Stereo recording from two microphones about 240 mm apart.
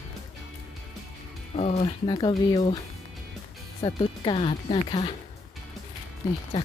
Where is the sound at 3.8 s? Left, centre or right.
Left.